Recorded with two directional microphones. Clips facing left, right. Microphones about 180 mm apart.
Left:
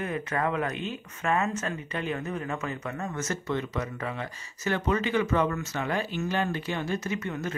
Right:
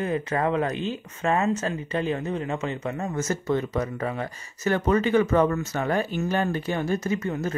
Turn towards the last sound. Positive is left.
turn(degrees=-35)  # may be behind; listen again after turning